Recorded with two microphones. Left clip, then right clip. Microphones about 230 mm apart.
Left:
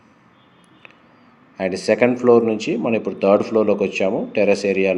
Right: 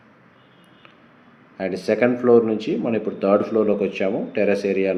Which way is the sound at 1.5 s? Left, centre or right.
Left.